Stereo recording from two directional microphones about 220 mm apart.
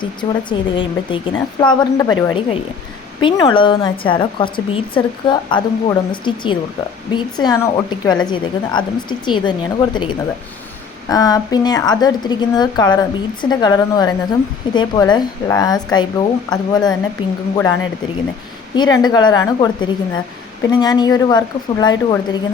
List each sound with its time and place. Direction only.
0.0 s a woman's voice: 20° left (ahead or behind)
18.7 s a woman's voice: 20° left (ahead or behind)